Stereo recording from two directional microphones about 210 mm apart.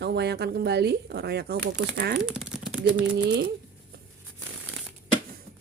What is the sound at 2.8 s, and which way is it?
Speech, 55° right (ahead or behind).